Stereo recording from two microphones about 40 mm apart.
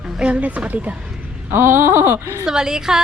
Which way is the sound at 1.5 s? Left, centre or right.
Right.